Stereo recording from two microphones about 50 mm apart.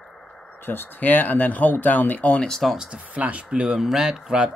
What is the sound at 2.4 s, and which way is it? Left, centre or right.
Speech, centre.